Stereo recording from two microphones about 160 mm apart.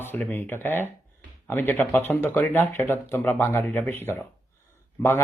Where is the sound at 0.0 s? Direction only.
10° left (ahead or behind).